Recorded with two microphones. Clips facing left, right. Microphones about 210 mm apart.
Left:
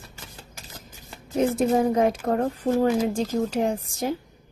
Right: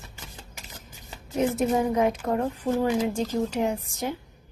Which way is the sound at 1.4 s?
35° left (ahead or behind).